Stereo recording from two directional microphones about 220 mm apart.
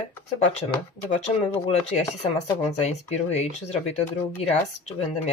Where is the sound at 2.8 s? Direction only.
30° left (ahead or behind).